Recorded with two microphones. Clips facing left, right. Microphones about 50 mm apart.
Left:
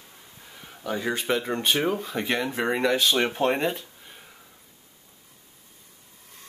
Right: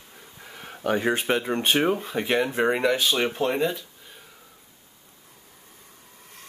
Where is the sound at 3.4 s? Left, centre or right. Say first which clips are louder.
Even; left.